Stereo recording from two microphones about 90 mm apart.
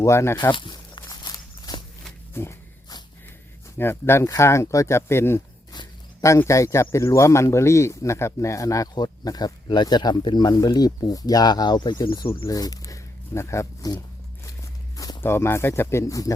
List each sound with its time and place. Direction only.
0.0 s speech: 30° left (ahead or behind)
0.5 s walk: 60° left (ahead or behind)
2.3 s a sound: 30° left (ahead or behind)
3.8 s speech: 25° left (ahead or behind); by 12.4 s 55° left (ahead or behind)
12.5 s speech: 45° left (ahead or behind)
13.9 s speech: 45° left (ahead or behind)
14.9 s walk: 45° left (ahead or behind)
15.2 s speech: 25° left (ahead or behind)